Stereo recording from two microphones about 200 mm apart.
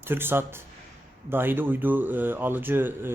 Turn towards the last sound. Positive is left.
turn(degrees=-10)  # may be behind; listen again after turning